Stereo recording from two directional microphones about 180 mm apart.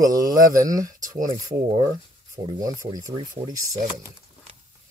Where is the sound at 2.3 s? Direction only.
20° right (ahead or behind).